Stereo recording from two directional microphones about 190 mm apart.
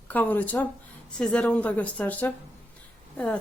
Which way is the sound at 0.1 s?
10° left (ahead or behind).